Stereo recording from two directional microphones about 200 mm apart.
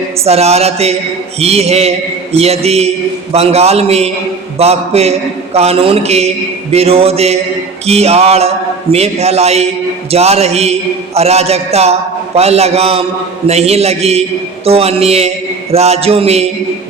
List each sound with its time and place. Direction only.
0.3 s a man's voice: 30° right (ahead or behind)